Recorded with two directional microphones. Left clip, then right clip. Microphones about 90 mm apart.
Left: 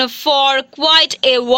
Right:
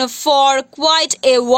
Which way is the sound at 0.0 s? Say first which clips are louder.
Right 1 dB; 30° right (ahead or behind).